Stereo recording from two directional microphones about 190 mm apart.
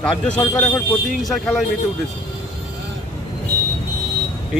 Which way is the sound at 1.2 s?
Centre (ahead or behind).